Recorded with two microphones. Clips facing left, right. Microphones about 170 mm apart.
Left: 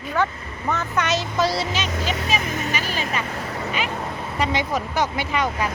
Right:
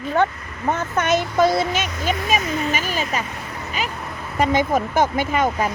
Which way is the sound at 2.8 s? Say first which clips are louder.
Right 2 dB; 45° right (ahead or behind).